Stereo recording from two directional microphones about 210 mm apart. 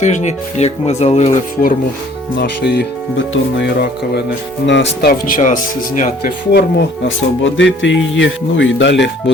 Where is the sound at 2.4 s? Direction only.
50° left (ahead or behind).